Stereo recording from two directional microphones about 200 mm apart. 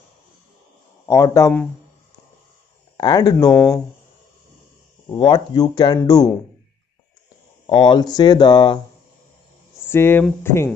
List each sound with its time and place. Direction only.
1.0 s speech: 15° left (ahead or behind)
3.0 s speech: 20° left (ahead or behind)
5.1 s speech: 25° left (ahead or behind)
7.6 s speech: 25° left (ahead or behind)